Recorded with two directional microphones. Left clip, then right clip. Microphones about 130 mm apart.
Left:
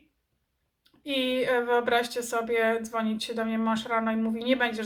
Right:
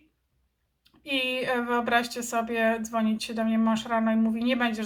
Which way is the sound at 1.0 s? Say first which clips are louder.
Left 1 dB; 5° left (ahead or behind).